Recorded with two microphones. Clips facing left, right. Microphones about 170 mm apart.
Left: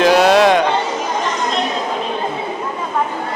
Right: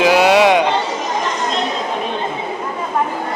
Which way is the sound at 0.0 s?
10° right (ahead or behind).